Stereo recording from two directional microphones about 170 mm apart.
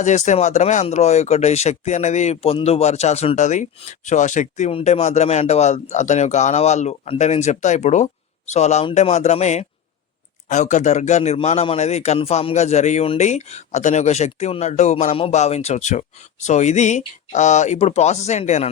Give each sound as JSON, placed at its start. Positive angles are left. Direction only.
{"t": 0.0, "sound": "speech", "side_deg": 45}